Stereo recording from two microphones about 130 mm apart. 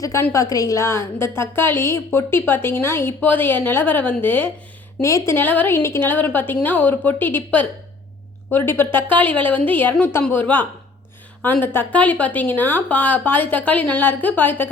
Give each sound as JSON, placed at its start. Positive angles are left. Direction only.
{"t": 0.0, "sound": "a woman's voice", "side_deg": 25}